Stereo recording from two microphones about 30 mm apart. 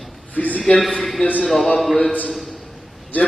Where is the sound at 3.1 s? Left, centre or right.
Left.